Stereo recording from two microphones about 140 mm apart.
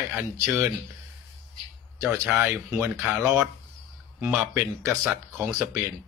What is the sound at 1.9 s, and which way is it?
Speech, 20° right (ahead or behind).